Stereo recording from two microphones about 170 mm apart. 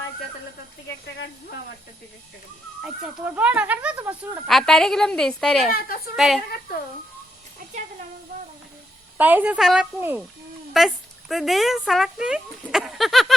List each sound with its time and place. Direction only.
1.0 s speech: 75° left (ahead or behind)
2.8 s speech: 10° right (ahead or behind)
4.4 s speech: centre (ahead or behind)
9.1 s speech: 10° right (ahead or behind)